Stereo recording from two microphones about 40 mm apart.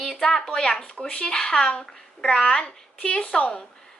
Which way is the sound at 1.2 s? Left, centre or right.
Centre.